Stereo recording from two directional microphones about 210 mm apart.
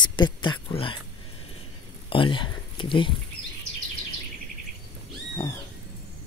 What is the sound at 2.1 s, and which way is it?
Speech, 25° left (ahead or behind).